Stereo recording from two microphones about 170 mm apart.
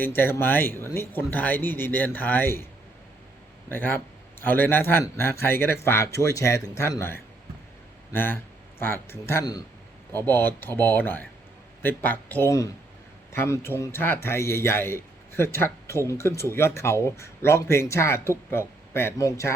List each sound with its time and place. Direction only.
0.0 s a man's voice: 10° left (ahead or behind)
3.7 s a man's voice: 10° left (ahead or behind)